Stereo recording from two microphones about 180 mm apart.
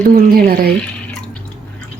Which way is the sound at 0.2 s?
55° right (ahead or behind).